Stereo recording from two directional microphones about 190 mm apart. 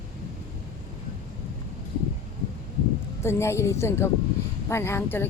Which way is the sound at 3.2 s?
15° left (ahead or behind).